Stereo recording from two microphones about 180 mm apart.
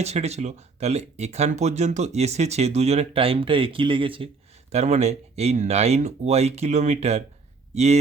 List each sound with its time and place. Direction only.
0.0 s speech: 35° right (ahead or behind)